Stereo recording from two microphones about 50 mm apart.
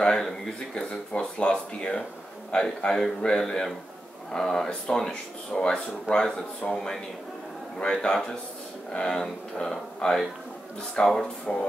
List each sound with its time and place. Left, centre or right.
0.0 s speech: centre